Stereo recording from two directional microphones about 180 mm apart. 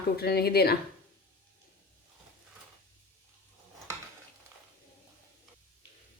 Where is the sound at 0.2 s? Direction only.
60° left (ahead or behind).